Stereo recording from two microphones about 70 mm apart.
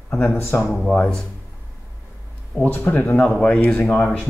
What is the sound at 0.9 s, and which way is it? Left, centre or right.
Speech, centre.